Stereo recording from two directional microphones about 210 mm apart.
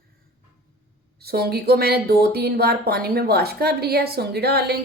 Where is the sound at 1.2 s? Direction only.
50° right (ahead or behind).